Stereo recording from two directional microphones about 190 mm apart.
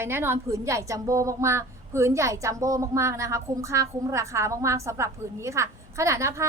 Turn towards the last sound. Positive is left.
turn(degrees=-15)  # may be behind; listen again after turning